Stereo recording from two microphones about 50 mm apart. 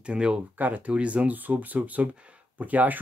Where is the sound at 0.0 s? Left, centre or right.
Right.